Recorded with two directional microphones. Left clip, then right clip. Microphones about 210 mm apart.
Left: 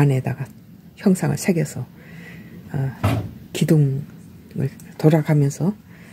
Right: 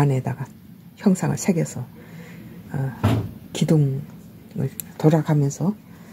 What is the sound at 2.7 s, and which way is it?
Music, 30° left (ahead or behind).